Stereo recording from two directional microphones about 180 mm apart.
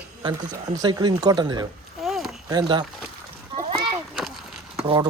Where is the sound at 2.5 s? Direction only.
25° right (ahead or behind).